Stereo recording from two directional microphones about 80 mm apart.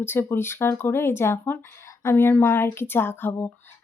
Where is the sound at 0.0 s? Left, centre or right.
Left.